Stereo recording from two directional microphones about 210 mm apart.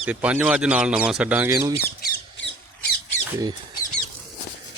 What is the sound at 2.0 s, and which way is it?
Squawk, 50° left (ahead or behind).